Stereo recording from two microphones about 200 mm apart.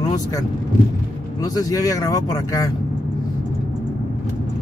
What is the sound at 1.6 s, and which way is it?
Speech, 20° left (ahead or behind).